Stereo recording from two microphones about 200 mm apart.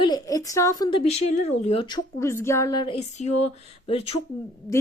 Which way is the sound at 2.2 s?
15° left (ahead or behind).